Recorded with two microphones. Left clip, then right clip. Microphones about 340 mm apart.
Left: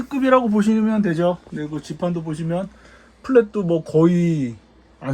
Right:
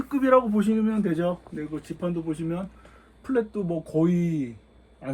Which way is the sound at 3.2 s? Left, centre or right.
Left.